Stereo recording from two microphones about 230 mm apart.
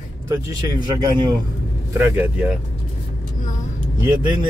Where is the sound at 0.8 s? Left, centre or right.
Centre.